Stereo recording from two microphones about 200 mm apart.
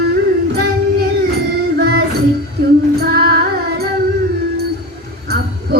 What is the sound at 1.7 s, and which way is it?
Music, 50° right (ahead or behind).